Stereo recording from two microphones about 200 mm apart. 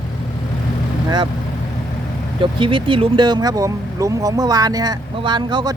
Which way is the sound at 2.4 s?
25° right (ahead or behind).